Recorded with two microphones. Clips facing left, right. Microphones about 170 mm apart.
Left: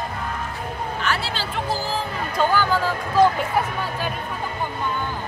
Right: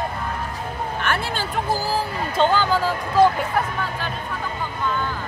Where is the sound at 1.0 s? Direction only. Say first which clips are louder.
Right 2 dB; 55° right (ahead or behind).